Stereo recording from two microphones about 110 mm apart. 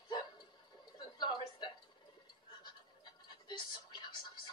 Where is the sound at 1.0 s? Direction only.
45° left (ahead or behind).